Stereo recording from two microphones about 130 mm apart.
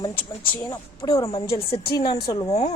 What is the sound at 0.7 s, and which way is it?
A woman's voice, 30° left (ahead or behind).